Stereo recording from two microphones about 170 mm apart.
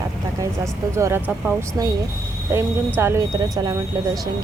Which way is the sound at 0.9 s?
15° right (ahead or behind).